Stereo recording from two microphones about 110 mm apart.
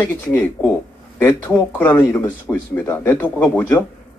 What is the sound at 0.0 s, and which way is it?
Speech, 20° left (ahead or behind).